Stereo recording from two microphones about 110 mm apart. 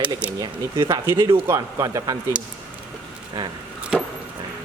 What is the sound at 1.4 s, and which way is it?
Speech, 25° right (ahead or behind).